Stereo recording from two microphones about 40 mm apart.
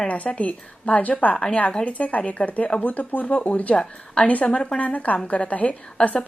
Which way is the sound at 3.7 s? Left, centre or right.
Left.